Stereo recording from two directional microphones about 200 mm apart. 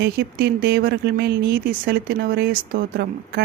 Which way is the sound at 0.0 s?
50° right (ahead or behind).